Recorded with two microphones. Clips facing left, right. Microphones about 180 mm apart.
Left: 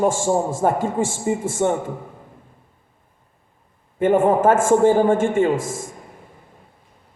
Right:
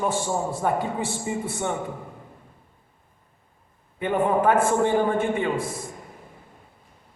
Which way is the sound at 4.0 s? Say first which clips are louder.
Left 6 dB; 45° left (ahead or behind).